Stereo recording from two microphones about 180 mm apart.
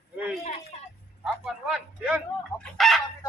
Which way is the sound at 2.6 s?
Centre (ahead or behind).